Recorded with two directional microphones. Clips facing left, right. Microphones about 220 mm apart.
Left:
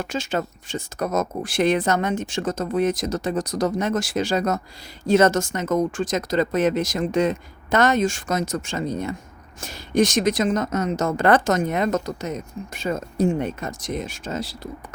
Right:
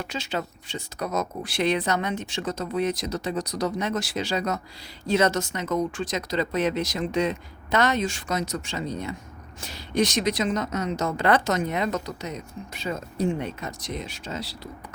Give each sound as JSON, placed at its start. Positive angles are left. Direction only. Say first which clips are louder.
{"t": 0.0, "sound": "a woman's voice", "louder": "left 5 dB", "side_deg": 50}